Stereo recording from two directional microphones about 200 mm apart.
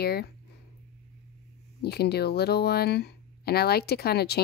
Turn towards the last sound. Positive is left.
turn(degrees=55)  # may be behind; listen again after turning